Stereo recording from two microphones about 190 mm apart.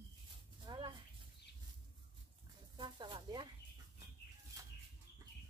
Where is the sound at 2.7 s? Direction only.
25° right (ahead or behind).